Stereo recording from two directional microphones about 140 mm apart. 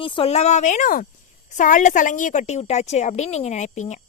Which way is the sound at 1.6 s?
65° left (ahead or behind).